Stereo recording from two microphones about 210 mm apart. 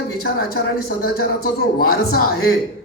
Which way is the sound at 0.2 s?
45° left (ahead or behind).